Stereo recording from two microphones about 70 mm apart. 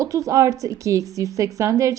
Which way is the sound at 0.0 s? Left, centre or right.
Right.